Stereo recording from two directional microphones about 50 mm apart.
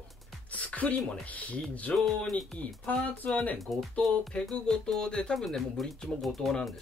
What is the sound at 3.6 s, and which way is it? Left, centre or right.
Speech, centre.